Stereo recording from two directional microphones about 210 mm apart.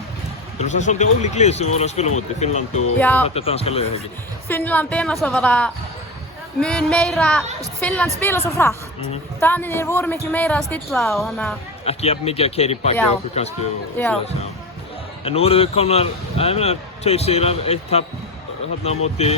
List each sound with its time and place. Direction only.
0.6 s speech: 35° left (ahead or behind)
3.0 s a man's voice: 10° left (ahead or behind)
3.2 s speech: 30° left (ahead or behind)
4.4 s a man's voice: 10° left (ahead or behind)
11.9 s speech: 30° left (ahead or behind)
14.0 s a man's voice: 10° left (ahead or behind)
15.2 s speech: 25° left (ahead or behind)